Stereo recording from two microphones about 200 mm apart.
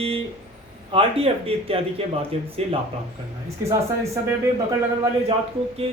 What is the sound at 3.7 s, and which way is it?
Speech, 15° right (ahead or behind).